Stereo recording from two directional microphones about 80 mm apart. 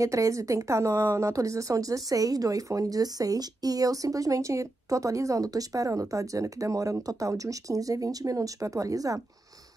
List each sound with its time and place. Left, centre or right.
0.0 s speech: right